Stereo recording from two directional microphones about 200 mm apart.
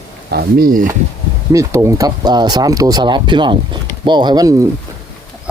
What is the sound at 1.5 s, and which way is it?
Speech, 15° right (ahead or behind).